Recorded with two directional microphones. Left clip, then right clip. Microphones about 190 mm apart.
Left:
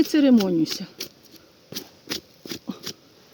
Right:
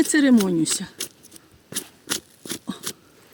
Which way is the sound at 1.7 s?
5° right (ahead or behind).